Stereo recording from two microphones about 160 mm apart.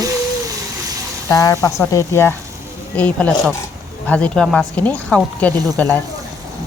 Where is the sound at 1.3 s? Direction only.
20° left (ahead or behind).